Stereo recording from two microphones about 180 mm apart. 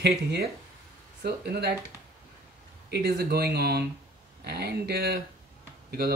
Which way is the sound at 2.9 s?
60° right (ahead or behind).